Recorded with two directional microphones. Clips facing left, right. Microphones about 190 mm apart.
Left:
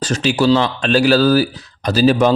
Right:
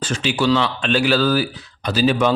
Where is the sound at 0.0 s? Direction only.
40° left (ahead or behind).